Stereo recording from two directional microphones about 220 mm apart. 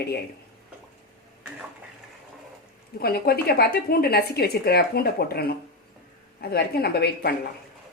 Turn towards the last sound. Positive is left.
turn(degrees=45)  # may be behind; listen again after turning